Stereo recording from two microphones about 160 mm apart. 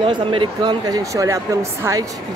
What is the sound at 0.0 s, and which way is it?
Speech, 30° right (ahead or behind).